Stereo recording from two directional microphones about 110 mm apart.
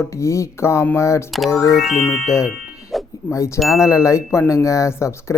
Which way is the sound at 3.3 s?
25° left (ahead or behind).